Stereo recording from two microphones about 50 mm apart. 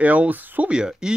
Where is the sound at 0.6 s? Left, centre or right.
Centre.